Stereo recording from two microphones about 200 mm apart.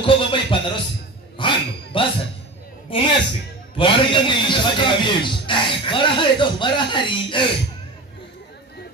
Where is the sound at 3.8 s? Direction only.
25° left (ahead or behind).